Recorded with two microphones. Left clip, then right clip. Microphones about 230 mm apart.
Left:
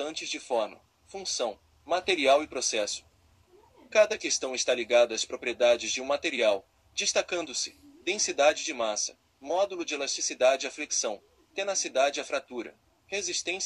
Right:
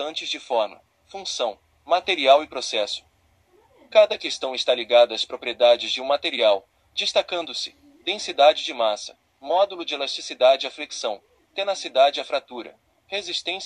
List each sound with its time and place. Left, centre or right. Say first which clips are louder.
0.0 s speech: right 6 dB; left